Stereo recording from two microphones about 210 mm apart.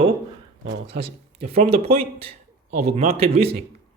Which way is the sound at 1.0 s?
30° right (ahead or behind).